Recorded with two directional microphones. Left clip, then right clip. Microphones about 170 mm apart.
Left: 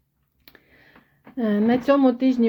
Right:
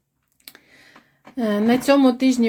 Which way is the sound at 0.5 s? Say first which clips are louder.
Right 6 dB; 10° right (ahead or behind).